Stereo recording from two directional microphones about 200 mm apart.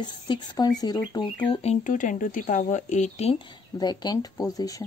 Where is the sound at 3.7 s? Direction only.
20° left (ahead or behind).